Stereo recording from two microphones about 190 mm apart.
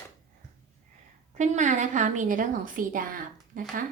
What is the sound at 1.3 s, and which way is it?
A woman's voice, 40° right (ahead or behind).